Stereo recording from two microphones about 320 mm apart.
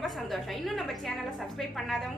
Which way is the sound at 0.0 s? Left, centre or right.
Centre.